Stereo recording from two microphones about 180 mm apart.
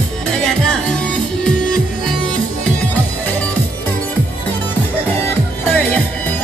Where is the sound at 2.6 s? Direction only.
10° left (ahead or behind).